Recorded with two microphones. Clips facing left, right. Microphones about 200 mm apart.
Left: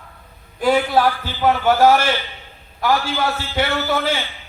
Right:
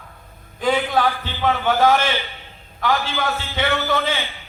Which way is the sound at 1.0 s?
10° left (ahead or behind).